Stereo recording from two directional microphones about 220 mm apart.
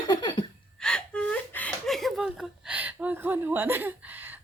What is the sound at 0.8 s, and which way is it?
Gasp, 5° left (ahead or behind).